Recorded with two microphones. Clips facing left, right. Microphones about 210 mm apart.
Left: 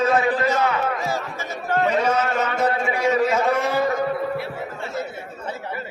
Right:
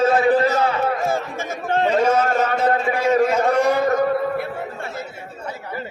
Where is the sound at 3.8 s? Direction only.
50° right (ahead or behind).